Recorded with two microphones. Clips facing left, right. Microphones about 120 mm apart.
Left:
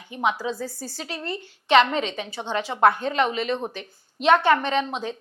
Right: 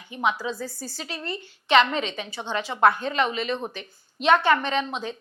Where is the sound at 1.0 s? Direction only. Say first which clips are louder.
Left 2 dB; 55° left (ahead or behind).